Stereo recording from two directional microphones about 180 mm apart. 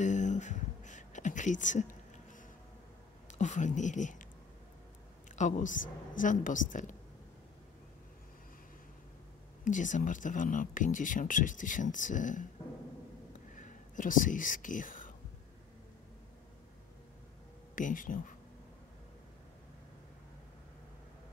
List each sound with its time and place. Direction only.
0.0 s a sound: 40° left (ahead or behind)
3.3 s speech: 40° left (ahead or behind)
5.3 s speech: 45° left (ahead or behind)
9.7 s speech: 45° left (ahead or behind)
13.5 s whispering: 45° left (ahead or behind)
17.7 s speech: 45° left (ahead or behind)